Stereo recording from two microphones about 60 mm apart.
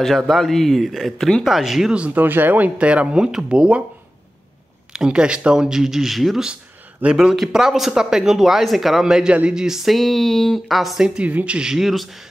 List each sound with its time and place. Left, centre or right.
0.0 s speech: centre
1.1 s speech: centre
1.4 s speech: centre
2.1 s speech: right; by 3.8 s centre
4.9 s speech: centre
6.4 s a sound: centre
7.2 s speech: centre
9.8 s speech: centre
11.2 s speech: right
11.7 s speech: centre